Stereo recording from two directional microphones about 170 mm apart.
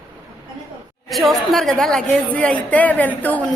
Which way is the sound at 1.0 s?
Centre (ahead or behind).